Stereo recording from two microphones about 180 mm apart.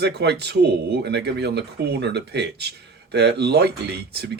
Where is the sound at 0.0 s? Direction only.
70° right (ahead or behind).